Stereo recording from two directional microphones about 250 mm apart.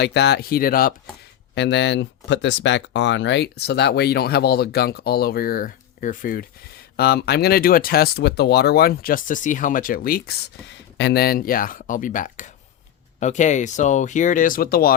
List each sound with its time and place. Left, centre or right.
0.0 s speech: left